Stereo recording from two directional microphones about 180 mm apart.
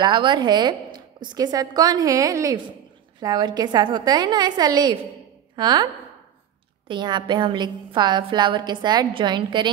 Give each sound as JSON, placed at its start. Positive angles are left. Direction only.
{"t": 0.0, "sound": "a woman's voice", "side_deg": -25}
{"t": 6.9, "sound": "a woman's voice", "side_deg": -25}